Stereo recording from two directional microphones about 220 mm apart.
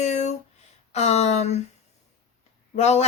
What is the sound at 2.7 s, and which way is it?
Speech, 30° left (ahead or behind).